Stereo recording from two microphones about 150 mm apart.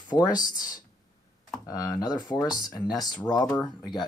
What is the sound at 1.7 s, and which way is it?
Speech, 5° right (ahead or behind).